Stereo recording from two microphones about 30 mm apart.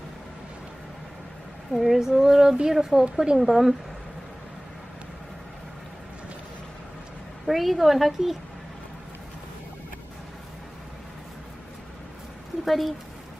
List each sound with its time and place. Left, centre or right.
1.7 s speech: centre
2.0 s a sound: centre
7.4 s a woman's voice: centre
12.6 s speech: centre